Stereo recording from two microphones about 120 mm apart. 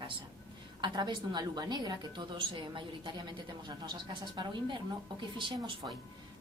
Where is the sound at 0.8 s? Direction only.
40° right (ahead or behind).